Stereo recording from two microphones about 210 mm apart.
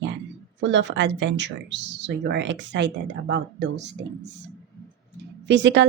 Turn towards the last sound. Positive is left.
turn(degrees=-55)  # may be behind; listen again after turning